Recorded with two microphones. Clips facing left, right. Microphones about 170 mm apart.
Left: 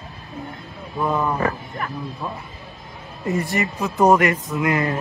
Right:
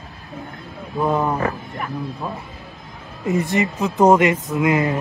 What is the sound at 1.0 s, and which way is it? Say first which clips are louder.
A man's voice: right 2 dB; 20° right (ahead or behind).